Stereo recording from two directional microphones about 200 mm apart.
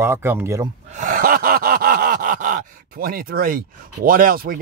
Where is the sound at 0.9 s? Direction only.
40° right (ahead or behind).